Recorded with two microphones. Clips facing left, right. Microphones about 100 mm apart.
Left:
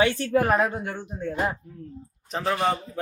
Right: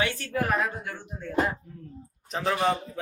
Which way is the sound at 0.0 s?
30° left (ahead or behind).